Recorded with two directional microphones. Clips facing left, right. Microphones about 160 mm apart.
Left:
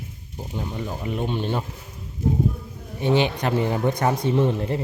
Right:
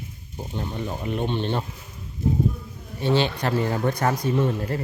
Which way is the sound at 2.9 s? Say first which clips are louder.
Left 1 dB; 15° left (ahead or behind).